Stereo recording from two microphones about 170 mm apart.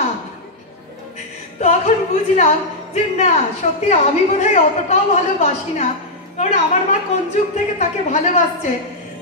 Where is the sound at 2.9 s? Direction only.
40° left (ahead or behind).